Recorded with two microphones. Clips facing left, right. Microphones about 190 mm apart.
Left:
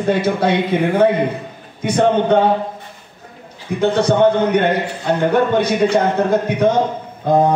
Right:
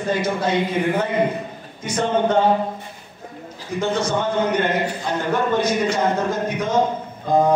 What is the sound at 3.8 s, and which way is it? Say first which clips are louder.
Music: left 8 dB; 65° left (ahead or behind).